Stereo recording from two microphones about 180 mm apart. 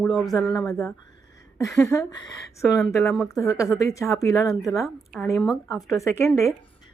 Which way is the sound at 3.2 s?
20° left (ahead or behind).